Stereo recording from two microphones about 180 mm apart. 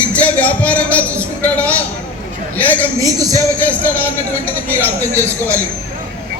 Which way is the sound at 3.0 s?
20° right (ahead or behind).